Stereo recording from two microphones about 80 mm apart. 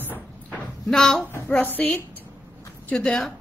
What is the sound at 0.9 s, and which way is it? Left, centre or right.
A woman's voice, centre.